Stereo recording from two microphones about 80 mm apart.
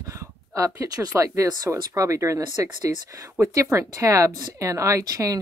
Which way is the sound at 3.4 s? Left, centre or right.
Right.